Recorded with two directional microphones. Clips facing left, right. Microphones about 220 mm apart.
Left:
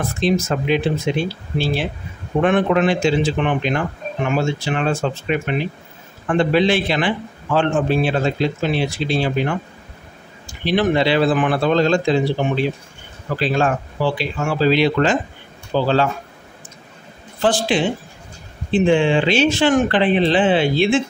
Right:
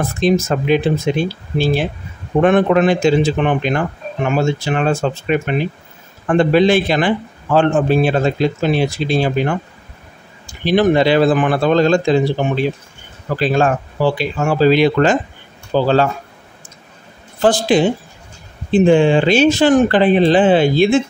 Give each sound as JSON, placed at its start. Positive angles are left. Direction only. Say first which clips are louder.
{"t": 0.2, "sound": "a man's voice", "louder": "right 4 dB", "side_deg": -45}
{"t": 10.6, "sound": "a man's voice", "louder": "right 4 dB", "side_deg": -45}
{"t": 13.4, "sound": "a man's voice", "louder": "right 4 dB", "side_deg": -45}
{"t": 17.4, "sound": "speech", "louder": "right 5 dB", "side_deg": -40}